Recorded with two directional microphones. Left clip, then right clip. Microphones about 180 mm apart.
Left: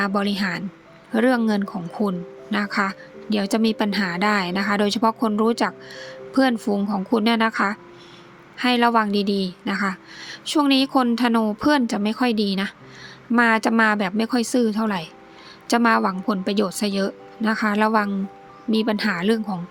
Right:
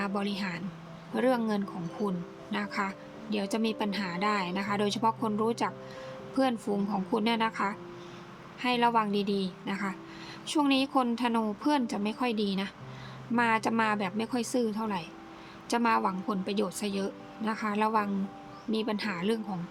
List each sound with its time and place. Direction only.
0.0 s speech: 35° left (ahead or behind)